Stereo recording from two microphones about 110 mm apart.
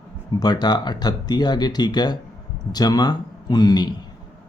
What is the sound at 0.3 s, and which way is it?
Speech, 40° left (ahead or behind).